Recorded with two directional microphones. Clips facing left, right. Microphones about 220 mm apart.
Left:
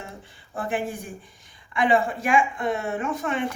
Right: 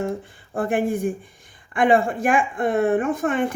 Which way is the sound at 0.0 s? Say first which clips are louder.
Right 14 dB; 55° right (ahead or behind).